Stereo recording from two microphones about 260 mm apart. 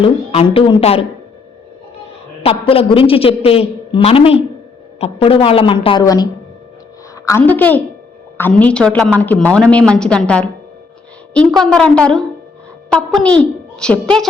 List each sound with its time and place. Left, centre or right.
0.0 s a man's voice: left
2.4 s a man's voice: left
7.3 s a woman's voice: centre